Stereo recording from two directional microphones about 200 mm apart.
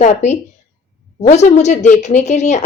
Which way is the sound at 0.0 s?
35° left (ahead or behind).